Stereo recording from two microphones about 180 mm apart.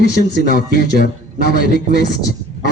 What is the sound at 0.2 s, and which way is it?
A man's voice, 60° left (ahead or behind).